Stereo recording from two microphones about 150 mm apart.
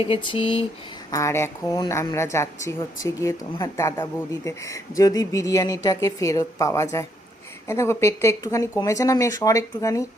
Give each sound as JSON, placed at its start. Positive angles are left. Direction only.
{"t": 0.0, "sound": "speech", "side_deg": 35}
{"t": 1.1, "sound": "speech", "side_deg": 20}